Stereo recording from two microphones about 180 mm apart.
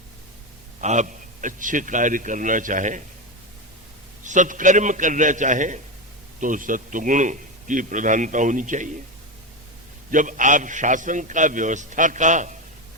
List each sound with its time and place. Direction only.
0.8 s a man's voice: 40° right (ahead or behind)
4.2 s a man's voice: 45° right (ahead or behind)
10.1 s a man's voice: 45° right (ahead or behind)